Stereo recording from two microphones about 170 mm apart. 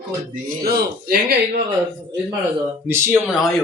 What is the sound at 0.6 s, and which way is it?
Speech, 65° right (ahead or behind).